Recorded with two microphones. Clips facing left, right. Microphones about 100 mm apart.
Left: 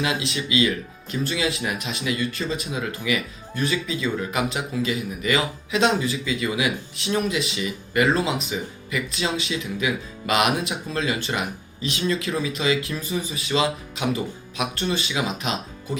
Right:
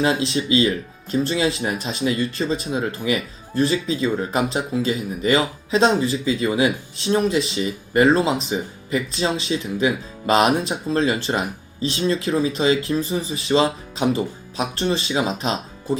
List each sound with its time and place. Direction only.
0.0 s speech: 35° right (ahead or behind)